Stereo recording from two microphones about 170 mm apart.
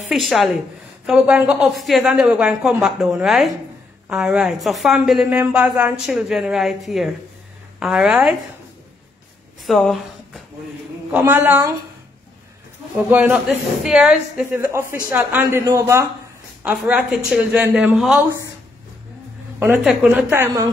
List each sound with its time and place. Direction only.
0.1 s a woman's voice: centre (ahead or behind)
9.7 s speech: centre (ahead or behind)
11.1 s speech: 10° right (ahead or behind)
12.9 s speech: 10° right (ahead or behind)
19.8 s speech: 5° right (ahead or behind)